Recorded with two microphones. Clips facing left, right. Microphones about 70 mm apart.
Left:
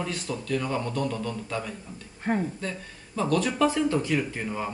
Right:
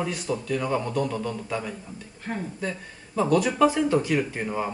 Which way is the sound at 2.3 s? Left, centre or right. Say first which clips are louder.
Left 6 dB; left.